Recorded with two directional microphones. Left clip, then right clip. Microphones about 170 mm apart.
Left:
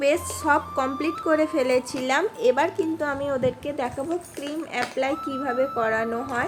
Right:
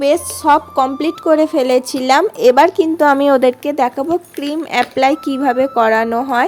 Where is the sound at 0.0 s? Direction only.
40° right (ahead or behind).